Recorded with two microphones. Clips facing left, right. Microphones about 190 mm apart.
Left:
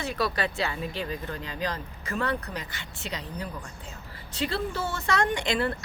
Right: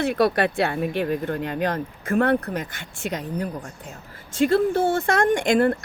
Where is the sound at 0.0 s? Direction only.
60° right (ahead or behind).